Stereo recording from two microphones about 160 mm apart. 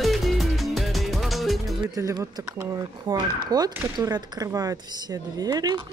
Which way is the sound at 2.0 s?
20° right (ahead or behind).